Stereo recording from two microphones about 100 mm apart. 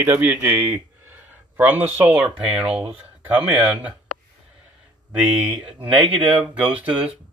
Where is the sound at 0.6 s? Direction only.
25° right (ahead or behind).